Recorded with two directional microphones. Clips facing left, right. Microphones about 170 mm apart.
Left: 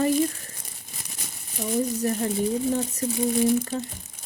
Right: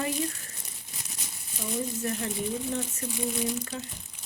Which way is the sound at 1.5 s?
40° left (ahead or behind).